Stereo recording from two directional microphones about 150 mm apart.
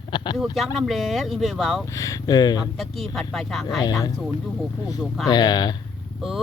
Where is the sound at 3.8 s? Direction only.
25° left (ahead or behind).